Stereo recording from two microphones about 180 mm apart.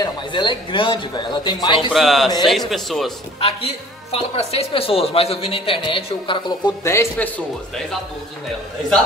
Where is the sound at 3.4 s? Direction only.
35° left (ahead or behind); by 7.3 s 15° left (ahead or behind).